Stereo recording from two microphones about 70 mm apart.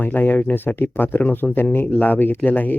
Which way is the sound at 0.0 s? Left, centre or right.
Left.